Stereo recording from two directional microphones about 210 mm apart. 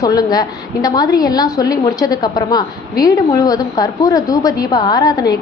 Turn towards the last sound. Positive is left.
turn(degrees=20)  # may be behind; listen again after turning